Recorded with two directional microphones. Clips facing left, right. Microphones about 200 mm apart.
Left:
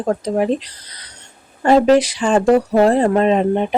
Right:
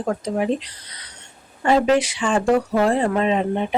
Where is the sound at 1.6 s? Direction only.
40° left (ahead or behind).